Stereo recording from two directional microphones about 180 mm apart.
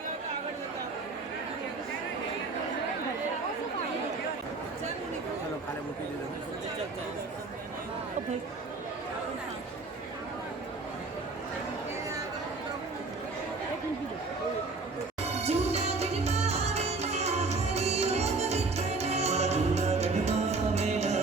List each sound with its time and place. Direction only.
15.4 s music: 35° right (ahead or behind)